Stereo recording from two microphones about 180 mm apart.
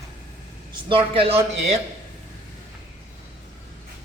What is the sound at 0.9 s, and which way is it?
Speech, 30° right (ahead or behind).